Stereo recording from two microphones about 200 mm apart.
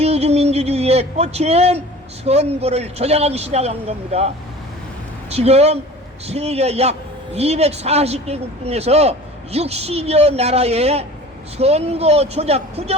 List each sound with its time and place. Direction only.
0.0 s a sound: 30° right (ahead or behind)
2.2 s speech: 30° right (ahead or behind)
5.3 s speech: 30° right (ahead or behind)